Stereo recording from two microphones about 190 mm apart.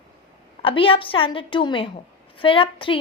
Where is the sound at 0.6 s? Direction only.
30° left (ahead or behind).